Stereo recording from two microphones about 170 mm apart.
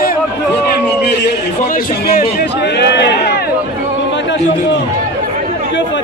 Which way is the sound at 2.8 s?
85° left.